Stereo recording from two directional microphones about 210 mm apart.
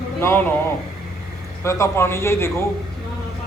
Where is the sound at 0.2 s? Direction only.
10° left (ahead or behind).